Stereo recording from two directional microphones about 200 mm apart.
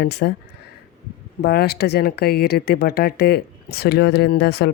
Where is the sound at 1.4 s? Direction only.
50° left (ahead or behind).